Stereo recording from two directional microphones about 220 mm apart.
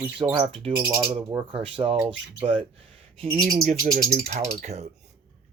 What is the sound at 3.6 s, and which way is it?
Speech, 40° right (ahead or behind).